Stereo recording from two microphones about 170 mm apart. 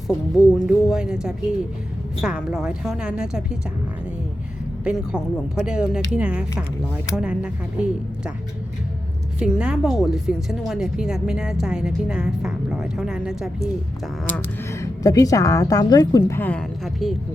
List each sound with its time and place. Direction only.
0.1 s a woman's voice: centre (ahead or behind)
4.8 s a woman's voice: 5° right (ahead or behind)
9.4 s a woman's voice: 5° right (ahead or behind)
14.3 s speech: 15° left (ahead or behind)
16.4 s a woman's voice: 5° left (ahead or behind)